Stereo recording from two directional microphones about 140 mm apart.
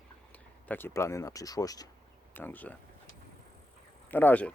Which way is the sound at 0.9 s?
20° left (ahead or behind).